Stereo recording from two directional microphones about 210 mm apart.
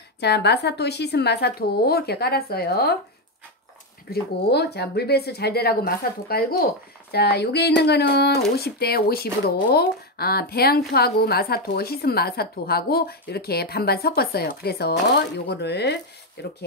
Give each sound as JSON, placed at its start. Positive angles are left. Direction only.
{"t": 0.2, "sound": "a woman's voice", "side_deg": 50}
{"t": 4.1, "sound": "a woman's voice", "side_deg": 50}